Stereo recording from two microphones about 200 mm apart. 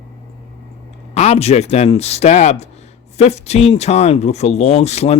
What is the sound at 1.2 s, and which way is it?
Speech, 30° left (ahead or behind).